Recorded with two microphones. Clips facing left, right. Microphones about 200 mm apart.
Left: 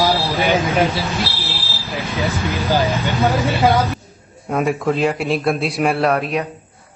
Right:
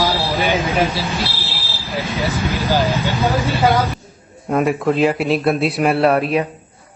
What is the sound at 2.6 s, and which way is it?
Speech, centre (ahead or behind).